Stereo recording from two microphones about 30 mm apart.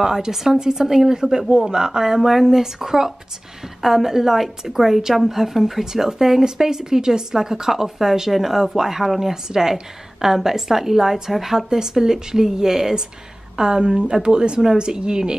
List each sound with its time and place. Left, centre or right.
0.0 s a woman's voice: centre
13.6 s a woman's voice: right